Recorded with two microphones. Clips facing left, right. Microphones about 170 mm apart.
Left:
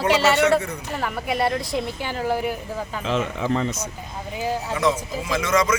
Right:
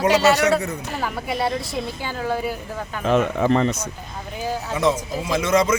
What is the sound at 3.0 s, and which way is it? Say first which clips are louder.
Speech: right 7 dB; 55° right (ahead or behind).